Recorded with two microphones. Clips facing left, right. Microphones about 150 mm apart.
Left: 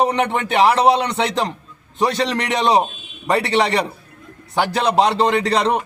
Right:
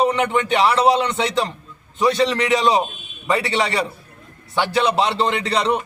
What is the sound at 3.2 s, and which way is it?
A man's voice, 35° left (ahead or behind).